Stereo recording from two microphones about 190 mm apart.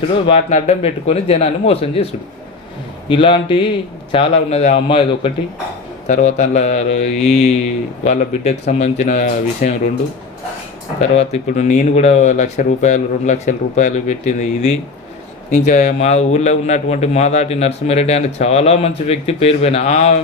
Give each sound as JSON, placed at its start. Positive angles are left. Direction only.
{"t": 0.3, "sound": "a man's voice", "side_deg": 35}
{"t": 3.1, "sound": "a man's voice", "side_deg": 25}
{"t": 11.1, "sound": "a man's voice", "side_deg": 35}